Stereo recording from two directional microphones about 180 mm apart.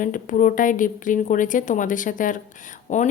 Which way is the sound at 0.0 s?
45° left (ahead or behind).